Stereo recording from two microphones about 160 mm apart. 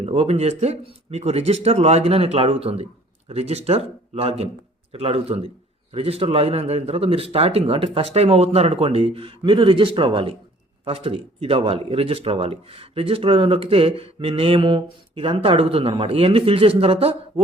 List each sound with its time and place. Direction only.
0.0 s speech: 35° right (ahead or behind)